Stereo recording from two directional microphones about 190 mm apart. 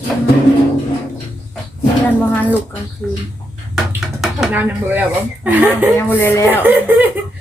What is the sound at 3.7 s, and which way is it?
Speech, centre (ahead or behind).